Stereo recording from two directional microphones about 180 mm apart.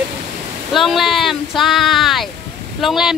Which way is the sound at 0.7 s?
Centre (ahead or behind).